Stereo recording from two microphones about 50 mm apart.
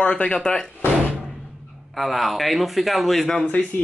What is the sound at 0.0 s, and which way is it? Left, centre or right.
Speech, left.